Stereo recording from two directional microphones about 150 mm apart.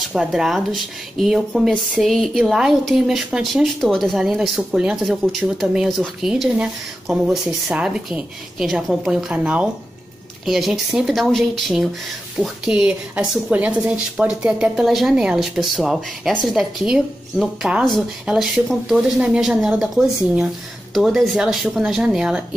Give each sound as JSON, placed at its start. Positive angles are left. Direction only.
{"t": 0.1, "sound": "speech", "side_deg": -5}